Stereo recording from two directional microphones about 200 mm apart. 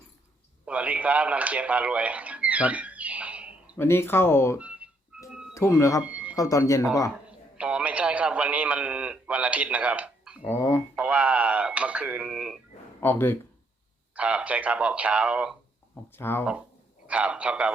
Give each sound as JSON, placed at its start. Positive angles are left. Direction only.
{"t": 0.6, "sound": "a man's voice", "side_deg": -5}
{"t": 3.8, "sound": "speech", "side_deg": 10}
{"t": 4.5, "sound": "a sound", "side_deg": -5}
{"t": 5.3, "sound": "music", "side_deg": 0}
{"t": 5.5, "sound": "speech", "side_deg": 15}
{"t": 6.1, "sound": "a sound", "side_deg": -5}
{"t": 6.3, "sound": "speech", "side_deg": 15}
{"t": 7.3, "sound": "a man's voice", "side_deg": -5}
{"t": 10.6, "sound": "speech", "side_deg": 10}
{"t": 10.9, "sound": "speech", "side_deg": -5}
{"t": 13.0, "sound": "speech", "side_deg": 10}
{"t": 14.2, "sound": "speech", "side_deg": -5}
{"t": 16.1, "sound": "speech", "side_deg": 10}
{"t": 17.1, "sound": "speech", "side_deg": -5}